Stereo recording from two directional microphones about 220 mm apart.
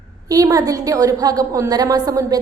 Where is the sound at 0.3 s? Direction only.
15° right (ahead or behind).